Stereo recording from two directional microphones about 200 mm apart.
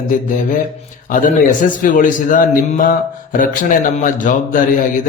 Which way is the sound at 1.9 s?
40° left (ahead or behind).